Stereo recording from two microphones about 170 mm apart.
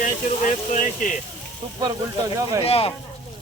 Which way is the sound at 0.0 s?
50° left (ahead or behind).